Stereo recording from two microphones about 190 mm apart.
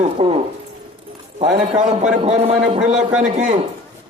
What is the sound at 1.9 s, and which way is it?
A man's voice, 35° right (ahead or behind).